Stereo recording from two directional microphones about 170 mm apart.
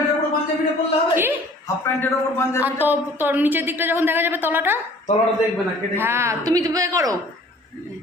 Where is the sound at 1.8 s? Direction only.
15° left (ahead or behind).